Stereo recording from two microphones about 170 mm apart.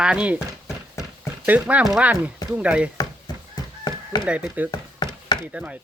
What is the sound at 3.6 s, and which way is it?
Chicken, 25° left (ahead or behind).